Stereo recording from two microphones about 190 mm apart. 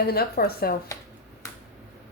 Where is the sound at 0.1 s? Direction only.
55° left (ahead or behind).